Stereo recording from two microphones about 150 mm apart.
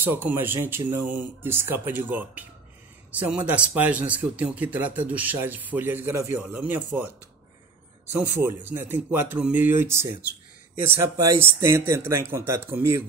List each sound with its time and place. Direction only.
0.0 s speech: 15° right (ahead or behind)
8.1 s speech: 15° right (ahead or behind)